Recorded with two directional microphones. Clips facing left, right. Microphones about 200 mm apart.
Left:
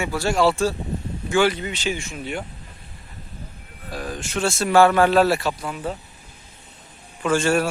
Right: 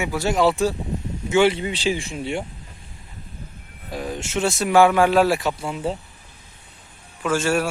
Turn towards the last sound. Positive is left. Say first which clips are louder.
# left 1 dB
turn(degrees=-5)  # may be behind; listen again after turning